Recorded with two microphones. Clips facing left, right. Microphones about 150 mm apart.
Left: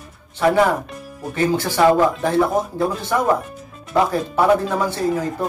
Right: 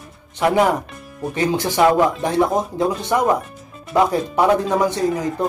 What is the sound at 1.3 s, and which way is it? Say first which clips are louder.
Speech: left 1 dB; 15° right (ahead or behind).